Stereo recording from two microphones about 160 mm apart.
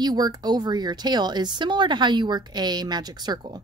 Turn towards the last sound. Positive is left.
turn(degrees=-25)  # may be behind; listen again after turning